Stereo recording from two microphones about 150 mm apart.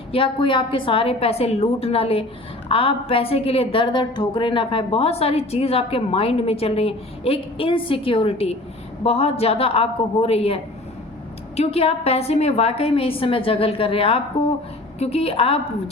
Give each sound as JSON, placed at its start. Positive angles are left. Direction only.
{"t": 0.1, "sound": "a woman's voice", "side_deg": 35}